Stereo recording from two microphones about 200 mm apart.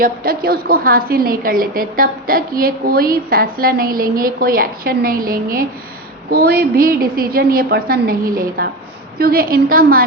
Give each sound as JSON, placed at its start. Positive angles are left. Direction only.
{"t": 0.0, "sound": "a woman's voice", "side_deg": -50}